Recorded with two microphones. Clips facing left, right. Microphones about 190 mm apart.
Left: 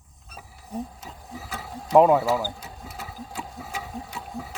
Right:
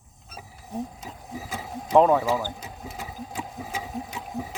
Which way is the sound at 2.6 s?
15° right (ahead or behind).